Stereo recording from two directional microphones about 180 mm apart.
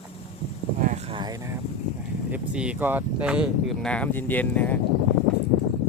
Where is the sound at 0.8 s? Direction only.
45° right (ahead or behind).